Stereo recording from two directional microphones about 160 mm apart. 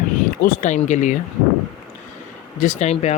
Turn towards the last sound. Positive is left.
turn(degrees=45)  # may be behind; listen again after turning